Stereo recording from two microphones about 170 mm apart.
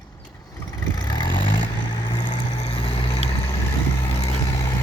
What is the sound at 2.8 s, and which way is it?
Vehicle, 35° left (ahead or behind).